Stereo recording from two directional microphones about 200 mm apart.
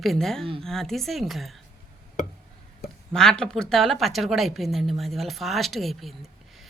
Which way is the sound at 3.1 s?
5° left (ahead or behind).